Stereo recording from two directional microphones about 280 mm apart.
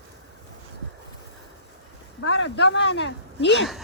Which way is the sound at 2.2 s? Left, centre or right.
Left.